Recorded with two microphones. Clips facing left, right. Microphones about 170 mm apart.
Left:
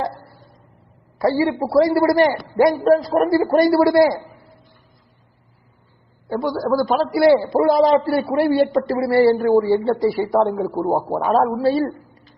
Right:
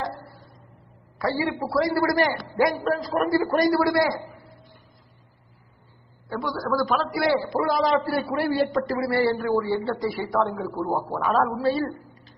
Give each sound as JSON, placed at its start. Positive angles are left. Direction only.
{"t": 1.2, "sound": "a man's voice", "side_deg": 25}
{"t": 6.2, "sound": "a man's voice", "side_deg": 30}